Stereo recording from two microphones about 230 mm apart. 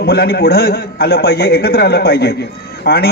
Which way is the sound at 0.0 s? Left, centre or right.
Left.